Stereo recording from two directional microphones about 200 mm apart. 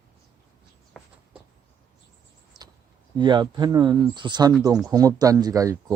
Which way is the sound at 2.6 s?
Centre (ahead or behind).